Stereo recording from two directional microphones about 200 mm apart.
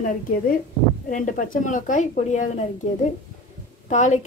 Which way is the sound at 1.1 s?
40° left (ahead or behind).